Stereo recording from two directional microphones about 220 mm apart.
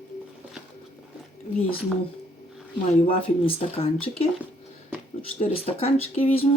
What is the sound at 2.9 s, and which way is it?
Speech, 30° left (ahead or behind).